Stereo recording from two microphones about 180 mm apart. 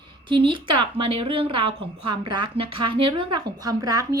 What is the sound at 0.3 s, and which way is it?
Speech, 30° right (ahead or behind).